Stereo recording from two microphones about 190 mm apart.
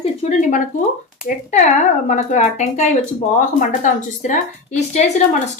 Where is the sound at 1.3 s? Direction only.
45° left (ahead or behind).